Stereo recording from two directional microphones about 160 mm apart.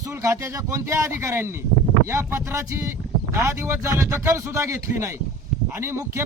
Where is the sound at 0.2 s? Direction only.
20° right (ahead or behind).